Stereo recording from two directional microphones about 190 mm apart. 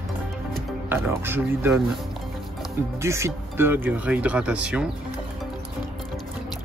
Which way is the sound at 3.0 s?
15° right (ahead or behind).